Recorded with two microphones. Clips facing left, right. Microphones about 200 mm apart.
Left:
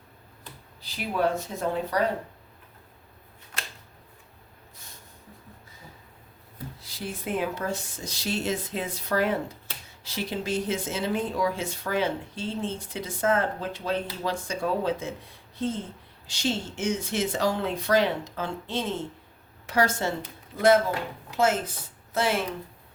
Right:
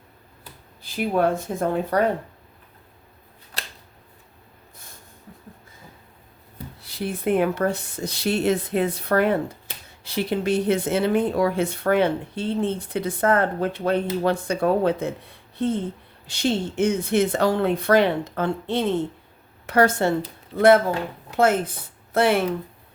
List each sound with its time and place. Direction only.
0.8 s speech: 50° right (ahead or behind)
3.5 s a sound: 35° right (ahead or behind)
6.8 s speech: 60° right (ahead or behind)